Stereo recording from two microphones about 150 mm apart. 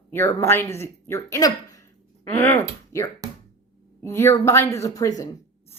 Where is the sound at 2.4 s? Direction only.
15° left (ahead or behind).